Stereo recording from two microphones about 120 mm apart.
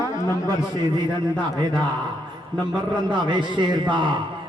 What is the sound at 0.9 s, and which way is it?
Speech, 35° right (ahead or behind).